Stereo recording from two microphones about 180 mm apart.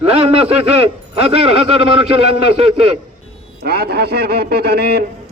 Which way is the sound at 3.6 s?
60° right (ahead or behind).